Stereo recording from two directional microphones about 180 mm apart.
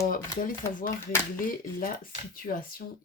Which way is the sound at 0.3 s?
50° left (ahead or behind).